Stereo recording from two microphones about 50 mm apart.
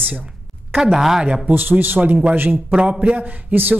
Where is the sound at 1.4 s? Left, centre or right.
Right.